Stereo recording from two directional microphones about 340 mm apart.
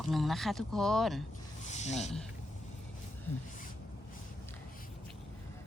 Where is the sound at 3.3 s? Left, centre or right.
Centre.